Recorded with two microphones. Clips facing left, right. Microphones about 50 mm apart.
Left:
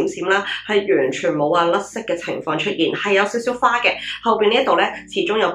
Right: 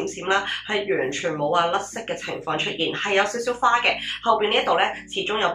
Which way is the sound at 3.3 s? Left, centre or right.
Left.